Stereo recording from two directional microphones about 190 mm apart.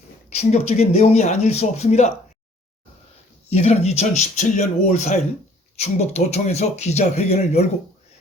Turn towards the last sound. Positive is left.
turn(degrees=35)  # may be behind; listen again after turning